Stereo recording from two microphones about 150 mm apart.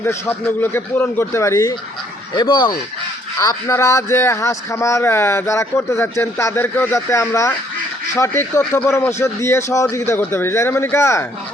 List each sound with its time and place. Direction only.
0.0 s a man's voice: 15° left (ahead or behind)
3.3 s a man's voice: 20° left (ahead or behind)